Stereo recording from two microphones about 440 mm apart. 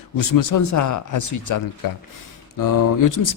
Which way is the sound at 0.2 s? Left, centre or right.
Left.